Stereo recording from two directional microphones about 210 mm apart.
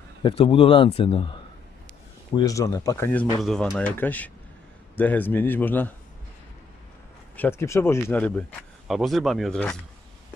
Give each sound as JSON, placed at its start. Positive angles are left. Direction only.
{"t": 0.2, "sound": "speech", "side_deg": 25}
{"t": 2.3, "sound": "speech", "side_deg": 15}
{"t": 7.3, "sound": "speech", "side_deg": 10}